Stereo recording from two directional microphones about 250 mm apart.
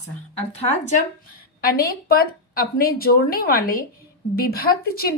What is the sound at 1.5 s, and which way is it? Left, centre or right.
A woman's voice, left.